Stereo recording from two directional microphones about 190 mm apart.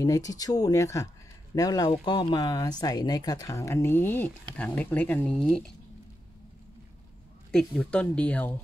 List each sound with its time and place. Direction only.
0.0 s speech: 20° left (ahead or behind); by 5.7 s centre (ahead or behind)
7.5 s speech: 5° left (ahead or behind)